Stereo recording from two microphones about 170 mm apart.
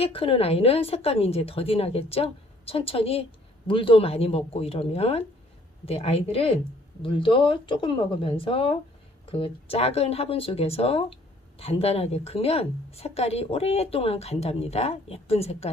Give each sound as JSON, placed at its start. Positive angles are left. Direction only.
{"t": 0.0, "sound": "speech", "side_deg": 35}